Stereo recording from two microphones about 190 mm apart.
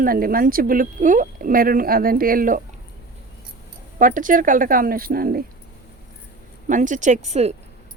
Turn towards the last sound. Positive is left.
turn(degrees=-35)  # may be behind; listen again after turning